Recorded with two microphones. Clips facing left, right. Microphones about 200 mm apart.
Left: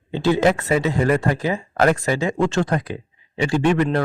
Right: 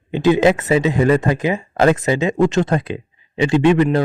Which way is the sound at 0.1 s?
15° right (ahead or behind).